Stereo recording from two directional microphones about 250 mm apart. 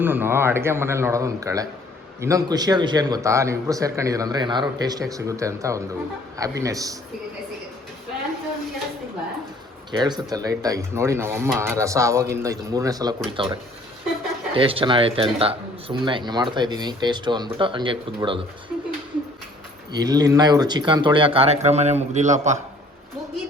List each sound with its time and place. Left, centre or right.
0.0 s speech: centre
10.0 s speech: centre
18.7 s a sound: centre
19.9 s speech: centre